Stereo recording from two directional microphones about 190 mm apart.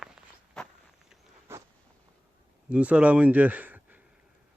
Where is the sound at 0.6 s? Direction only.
Centre (ahead or behind).